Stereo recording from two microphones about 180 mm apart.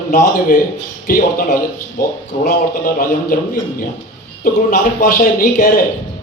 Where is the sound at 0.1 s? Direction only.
50° left (ahead or behind).